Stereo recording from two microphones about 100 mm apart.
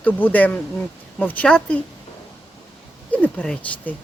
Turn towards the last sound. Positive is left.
turn(degrees=10)  # may be behind; listen again after turning